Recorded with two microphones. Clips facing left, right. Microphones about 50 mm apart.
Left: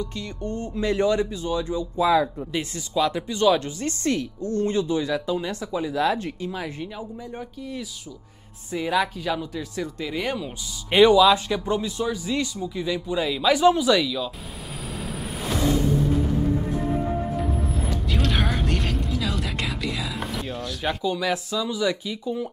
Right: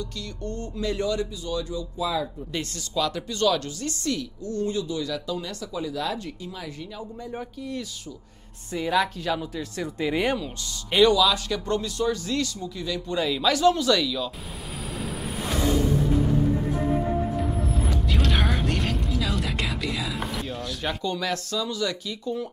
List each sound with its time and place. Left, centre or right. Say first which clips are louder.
0.0 s speech: left 3 dB; left
2.0 s speech: left 8 dB; left
2.5 s speech: even; centre
4.0 s speech: left 5 dB; left
7.3 s speech: right 2 dB; centre
9.9 s speech: right 5 dB; centre
10.9 s speech: left 4 dB; left
11.6 s speech: even; centre
18.1 s speech: left 1 dB; centre